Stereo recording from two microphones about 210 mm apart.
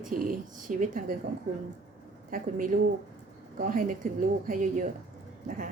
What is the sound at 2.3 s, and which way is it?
A woman's voice, 40° right (ahead or behind).